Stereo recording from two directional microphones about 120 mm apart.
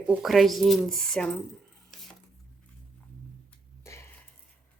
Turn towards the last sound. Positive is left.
turn(degrees=25)  # may be behind; listen again after turning